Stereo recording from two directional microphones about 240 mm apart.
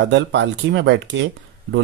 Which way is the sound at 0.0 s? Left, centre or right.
Right.